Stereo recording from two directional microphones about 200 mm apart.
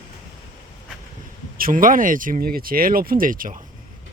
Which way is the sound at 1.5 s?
45° right (ahead or behind).